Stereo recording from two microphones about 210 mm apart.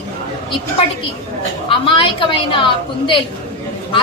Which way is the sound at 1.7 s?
25° left (ahead or behind).